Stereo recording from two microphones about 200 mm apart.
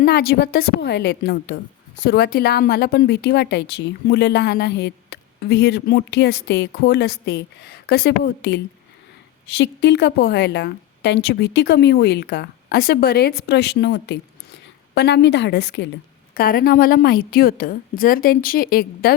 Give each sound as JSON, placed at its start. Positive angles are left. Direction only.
{"t": 0.0, "sound": "a woman's voice", "side_deg": 50}
{"t": 16.3, "sound": "a woman's voice", "side_deg": 45}